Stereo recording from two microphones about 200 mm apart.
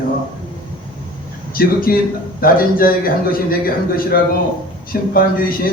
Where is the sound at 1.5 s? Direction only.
45° left (ahead or behind).